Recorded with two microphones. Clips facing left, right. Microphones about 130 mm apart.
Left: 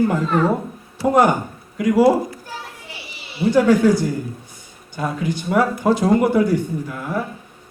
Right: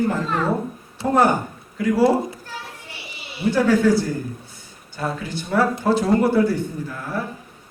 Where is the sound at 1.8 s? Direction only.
15° left (ahead or behind).